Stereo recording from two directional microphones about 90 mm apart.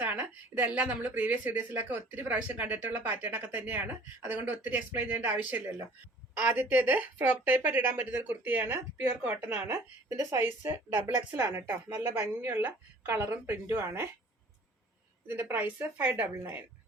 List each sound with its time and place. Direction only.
0.0 s speech: 20° right (ahead or behind)
15.3 s speech: 20° right (ahead or behind)